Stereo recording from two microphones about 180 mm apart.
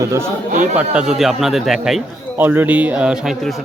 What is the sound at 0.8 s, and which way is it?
A man's voice, 5° right (ahead or behind).